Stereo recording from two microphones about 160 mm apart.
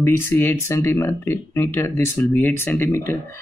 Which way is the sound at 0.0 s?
15° left (ahead or behind).